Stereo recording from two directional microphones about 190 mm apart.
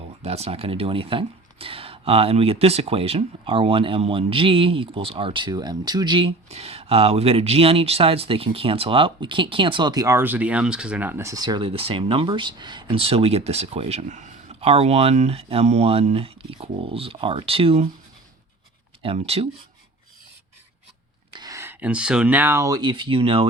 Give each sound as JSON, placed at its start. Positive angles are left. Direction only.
{"t": 0.2, "sound": "speech", "side_deg": -35}
{"t": 19.0, "sound": "speech", "side_deg": -30}
{"t": 21.3, "sound": "speech", "side_deg": -20}